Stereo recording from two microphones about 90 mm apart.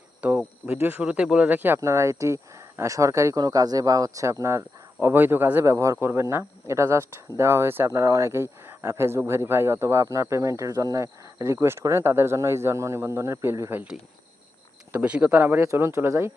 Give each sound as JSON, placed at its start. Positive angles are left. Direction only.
{"t": 0.2, "sound": "speech", "side_deg": -20}
{"t": 1.8, "sound": "speech", "side_deg": -35}
{"t": 3.3, "sound": "speech", "side_deg": -45}
{"t": 14.9, "sound": "speech", "side_deg": -15}
{"t": 15.6, "sound": "speech", "side_deg": -35}